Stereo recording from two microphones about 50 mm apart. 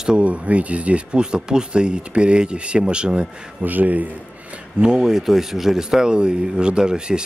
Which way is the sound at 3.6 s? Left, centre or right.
Right.